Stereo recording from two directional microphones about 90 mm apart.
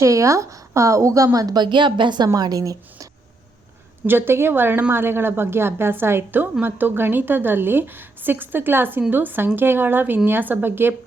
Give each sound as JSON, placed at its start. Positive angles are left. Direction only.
{"t": 0.0, "sound": "a woman's voice", "side_deg": -35}
{"t": 2.3, "sound": "a woman's voice", "side_deg": -40}
{"t": 4.0, "sound": "a woman's voice", "side_deg": -25}